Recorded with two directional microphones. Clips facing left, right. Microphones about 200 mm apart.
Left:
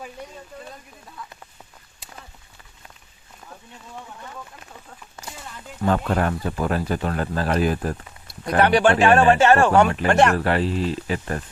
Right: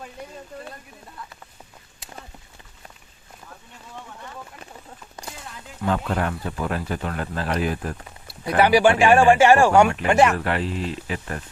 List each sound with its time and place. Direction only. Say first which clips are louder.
5.8 s speech: left 3 dB; 45° left (ahead or behind)
8.4 s speech: right 1 dB; 10° right (ahead or behind)
10.3 s speech: left 4 dB; 35° left (ahead or behind)